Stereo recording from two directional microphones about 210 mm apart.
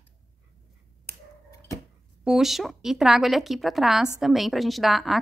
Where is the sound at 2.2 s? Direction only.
Centre (ahead or behind).